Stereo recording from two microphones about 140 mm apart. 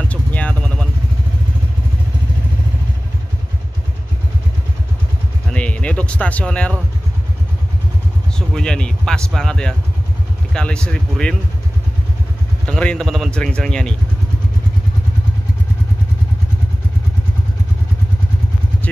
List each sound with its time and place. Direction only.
0.1 s vehicle: 10° left (ahead or behind)
5.5 s music: 10° left (ahead or behind)
8.4 s speech: 5° left (ahead or behind)
12.6 s speech: 5° left (ahead or behind)